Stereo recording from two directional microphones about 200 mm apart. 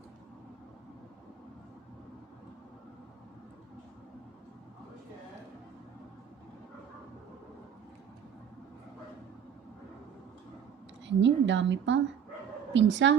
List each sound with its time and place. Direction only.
11.0 s a woman's voice: 65° right (ahead or behind)